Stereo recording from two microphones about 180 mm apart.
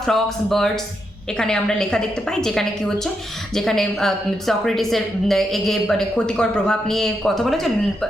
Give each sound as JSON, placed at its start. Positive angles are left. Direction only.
{"t": 0.0, "sound": "speech", "side_deg": 0}